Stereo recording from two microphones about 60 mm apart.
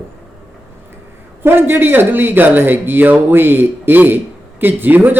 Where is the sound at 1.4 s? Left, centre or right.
Right.